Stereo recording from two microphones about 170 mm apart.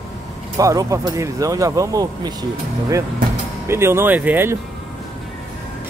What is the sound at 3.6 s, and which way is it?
Speech, 15° right (ahead or behind).